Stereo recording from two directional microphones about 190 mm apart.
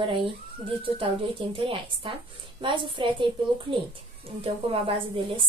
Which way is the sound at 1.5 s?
25° right (ahead or behind).